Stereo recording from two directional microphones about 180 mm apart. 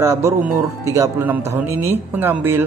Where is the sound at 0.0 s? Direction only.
15° right (ahead or behind).